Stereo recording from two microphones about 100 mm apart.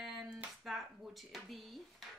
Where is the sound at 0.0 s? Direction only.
5° right (ahead or behind).